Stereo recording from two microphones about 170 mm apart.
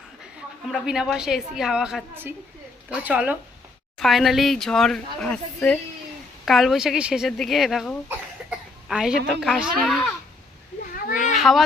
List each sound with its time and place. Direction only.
0.7 s speech: centre (ahead or behind)
8.4 s cough: 5° right (ahead or behind)
9.4 s speech: 5° right (ahead or behind)
10.9 s children playing: 50° left (ahead or behind)
11.3 s children playing: centre (ahead or behind)